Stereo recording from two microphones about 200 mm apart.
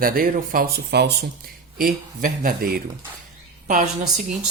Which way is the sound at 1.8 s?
40° right (ahead or behind).